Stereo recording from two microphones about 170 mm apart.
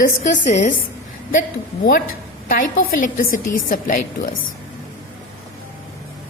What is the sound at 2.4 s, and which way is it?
A woman's voice, 55° left (ahead or behind).